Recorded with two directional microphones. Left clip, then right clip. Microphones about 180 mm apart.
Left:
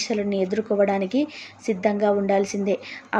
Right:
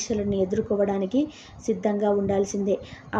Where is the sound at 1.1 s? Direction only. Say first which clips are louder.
Left 1 dB; 55° left (ahead or behind).